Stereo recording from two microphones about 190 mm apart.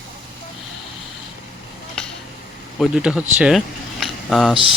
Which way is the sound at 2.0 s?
5° left (ahead or behind).